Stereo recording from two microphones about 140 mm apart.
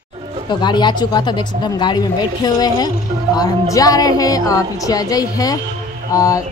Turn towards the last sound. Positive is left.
turn(degrees=25)  # may be behind; listen again after turning